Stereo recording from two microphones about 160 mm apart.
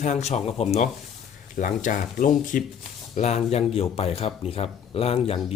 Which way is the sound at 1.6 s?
55° left (ahead or behind).